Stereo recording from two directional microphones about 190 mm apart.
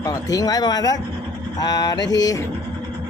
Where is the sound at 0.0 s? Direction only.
20° left (ahead or behind).